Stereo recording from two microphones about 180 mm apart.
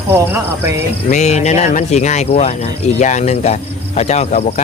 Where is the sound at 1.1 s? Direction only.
40° left (ahead or behind).